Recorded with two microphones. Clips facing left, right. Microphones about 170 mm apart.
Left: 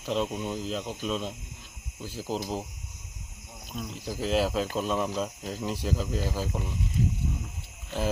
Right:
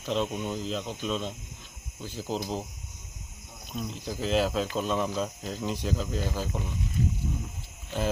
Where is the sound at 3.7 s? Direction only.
Centre (ahead or behind).